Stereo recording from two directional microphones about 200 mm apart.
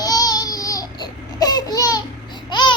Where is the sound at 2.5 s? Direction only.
25° left (ahead or behind).